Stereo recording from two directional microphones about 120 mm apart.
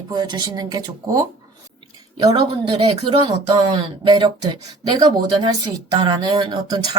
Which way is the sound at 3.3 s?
35° right (ahead or behind).